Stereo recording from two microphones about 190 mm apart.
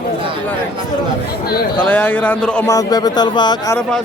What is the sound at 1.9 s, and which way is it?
Speech, 10° left (ahead or behind).